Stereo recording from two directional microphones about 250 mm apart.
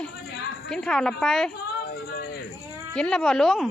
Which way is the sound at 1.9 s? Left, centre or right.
Left.